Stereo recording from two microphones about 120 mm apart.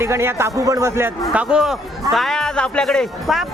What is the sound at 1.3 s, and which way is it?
A man's voice, 5° right (ahead or behind).